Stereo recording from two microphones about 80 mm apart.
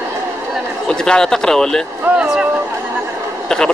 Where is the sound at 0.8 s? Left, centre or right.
Centre.